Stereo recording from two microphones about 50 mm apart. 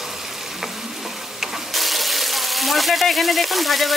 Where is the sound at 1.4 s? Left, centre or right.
Centre.